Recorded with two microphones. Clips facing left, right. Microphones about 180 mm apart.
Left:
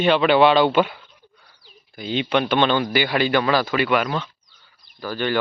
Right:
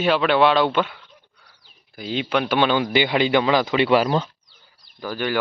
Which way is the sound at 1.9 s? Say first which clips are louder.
Left 2 dB; centre (ahead or behind).